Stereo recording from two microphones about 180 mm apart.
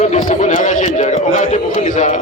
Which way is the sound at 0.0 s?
40° left (ahead or behind).